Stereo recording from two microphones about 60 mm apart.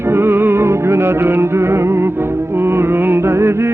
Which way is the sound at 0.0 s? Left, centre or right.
Right.